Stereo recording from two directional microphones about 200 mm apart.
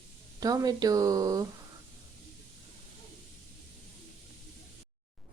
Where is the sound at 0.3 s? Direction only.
20° right (ahead or behind).